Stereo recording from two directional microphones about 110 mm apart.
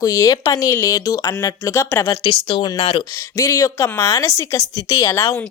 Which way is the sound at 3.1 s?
30° left (ahead or behind).